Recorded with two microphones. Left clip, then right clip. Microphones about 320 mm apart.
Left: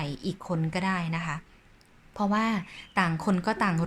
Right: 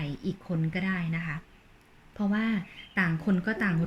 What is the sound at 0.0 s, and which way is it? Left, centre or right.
Speech, centre.